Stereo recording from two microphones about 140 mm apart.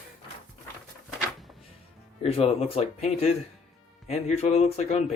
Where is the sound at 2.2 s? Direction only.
45° left (ahead or behind).